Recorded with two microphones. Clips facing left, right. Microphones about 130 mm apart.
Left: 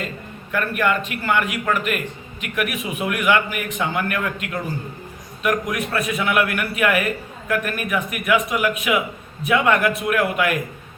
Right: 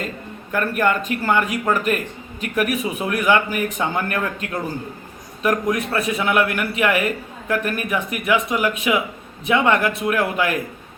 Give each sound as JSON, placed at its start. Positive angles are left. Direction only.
{"t": 0.5, "sound": "a man's voice", "side_deg": -40}